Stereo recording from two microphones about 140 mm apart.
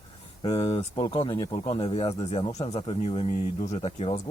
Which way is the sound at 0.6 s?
45° left (ahead or behind).